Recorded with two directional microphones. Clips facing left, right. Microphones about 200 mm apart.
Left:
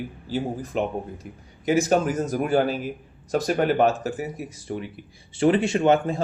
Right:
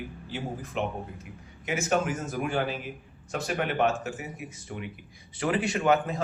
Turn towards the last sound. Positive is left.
turn(degrees=25)  # may be behind; listen again after turning